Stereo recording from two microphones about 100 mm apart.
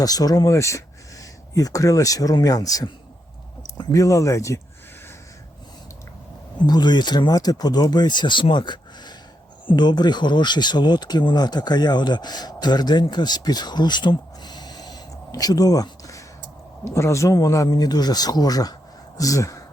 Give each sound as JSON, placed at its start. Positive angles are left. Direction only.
{"t": 0.0, "sound": "speech", "side_deg": 40}
{"t": 6.7, "sound": "speech", "side_deg": 45}